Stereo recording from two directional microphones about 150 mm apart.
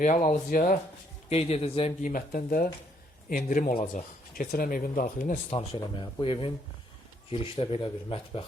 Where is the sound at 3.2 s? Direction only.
65° left (ahead or behind).